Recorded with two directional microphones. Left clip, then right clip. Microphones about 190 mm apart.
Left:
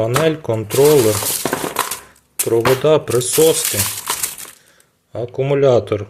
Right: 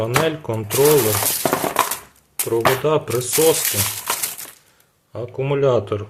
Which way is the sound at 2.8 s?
20° left (ahead or behind).